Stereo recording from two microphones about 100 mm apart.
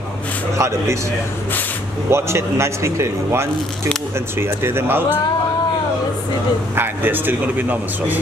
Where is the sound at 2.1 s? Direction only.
25° right (ahead or behind).